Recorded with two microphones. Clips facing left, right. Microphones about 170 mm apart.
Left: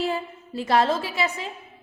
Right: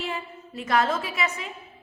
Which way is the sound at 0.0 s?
35° left (ahead or behind).